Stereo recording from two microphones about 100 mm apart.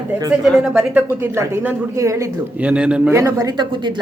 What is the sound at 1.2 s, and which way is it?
Speech, 25° right (ahead or behind).